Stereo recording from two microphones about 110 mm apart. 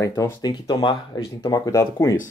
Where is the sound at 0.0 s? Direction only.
30° left (ahead or behind); by 1.2 s 50° left (ahead or behind).